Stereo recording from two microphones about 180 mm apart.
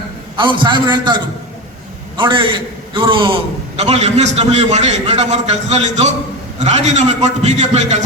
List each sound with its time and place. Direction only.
0.3 s a man's voice: 25° right (ahead or behind)